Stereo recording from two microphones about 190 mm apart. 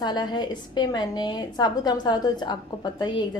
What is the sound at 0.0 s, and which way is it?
A woman's voice, 25° left (ahead or behind).